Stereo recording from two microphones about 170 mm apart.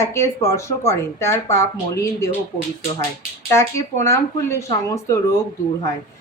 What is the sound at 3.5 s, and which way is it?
Speech, 15° left (ahead or behind).